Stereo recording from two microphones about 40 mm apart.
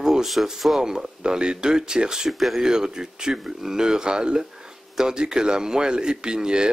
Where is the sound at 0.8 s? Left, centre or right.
Centre.